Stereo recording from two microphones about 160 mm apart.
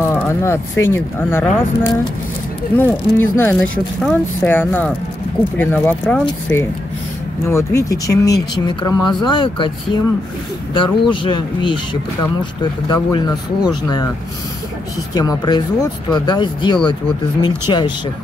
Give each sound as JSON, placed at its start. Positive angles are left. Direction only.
{"t": 0.1, "sound": "speech", "side_deg": 15}
{"t": 7.4, "sound": "speech", "side_deg": 20}
{"t": 10.7, "sound": "speech", "side_deg": 30}
{"t": 15.1, "sound": "speech", "side_deg": 25}